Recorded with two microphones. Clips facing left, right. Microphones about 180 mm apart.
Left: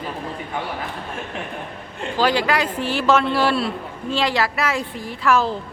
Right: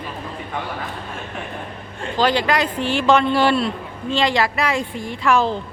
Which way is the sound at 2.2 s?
10° left (ahead or behind).